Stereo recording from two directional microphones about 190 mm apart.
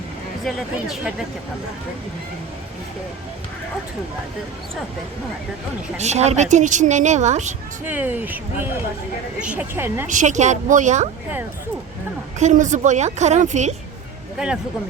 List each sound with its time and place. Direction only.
0.4 s speech: centre (ahead or behind)
6.0 s a woman's voice: 35° right (ahead or behind)
7.9 s speech: 10° right (ahead or behind)
10.1 s a woman's voice: 40° right (ahead or behind)
12.4 s a woman's voice: 40° right (ahead or behind)
14.3 s speech: 5° right (ahead or behind)